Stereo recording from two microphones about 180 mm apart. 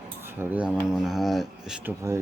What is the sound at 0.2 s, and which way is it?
Cutlery, 10° right (ahead or behind).